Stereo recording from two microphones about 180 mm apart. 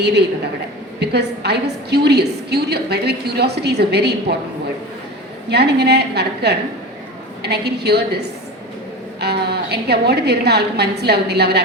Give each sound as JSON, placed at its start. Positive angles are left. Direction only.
{"t": 0.0, "sound": "a woman's voice", "side_deg": -70}
{"t": 5.5, "sound": "a woman's voice", "side_deg": -65}